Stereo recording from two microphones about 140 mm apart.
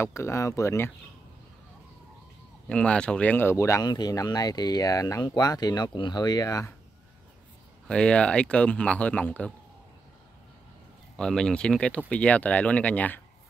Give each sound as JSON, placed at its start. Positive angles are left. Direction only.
{"t": 0.0, "sound": "speech", "side_deg": 20}
{"t": 2.7, "sound": "speech", "side_deg": 5}
{"t": 7.9, "sound": "speech", "side_deg": 5}
{"t": 11.1, "sound": "speech", "side_deg": 5}